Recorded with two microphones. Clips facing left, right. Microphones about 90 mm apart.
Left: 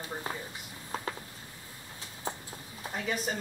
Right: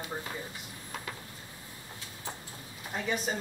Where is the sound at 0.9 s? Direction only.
35° left (ahead or behind).